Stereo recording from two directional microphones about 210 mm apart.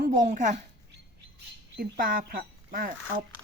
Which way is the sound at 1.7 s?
45° right (ahead or behind).